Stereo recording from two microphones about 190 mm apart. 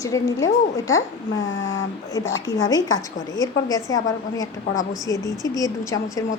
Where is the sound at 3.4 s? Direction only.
20° left (ahead or behind).